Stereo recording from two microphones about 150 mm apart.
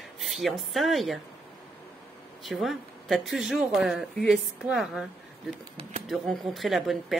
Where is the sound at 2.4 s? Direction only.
Centre (ahead or behind).